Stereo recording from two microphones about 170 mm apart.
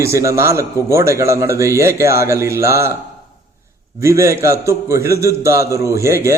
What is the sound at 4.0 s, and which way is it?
A man's voice, 15° right (ahead or behind).